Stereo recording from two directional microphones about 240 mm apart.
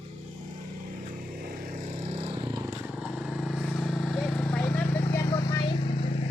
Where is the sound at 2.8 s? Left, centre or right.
Centre; by 6.1 s left.